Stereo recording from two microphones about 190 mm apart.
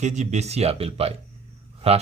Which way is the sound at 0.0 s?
40° right (ahead or behind).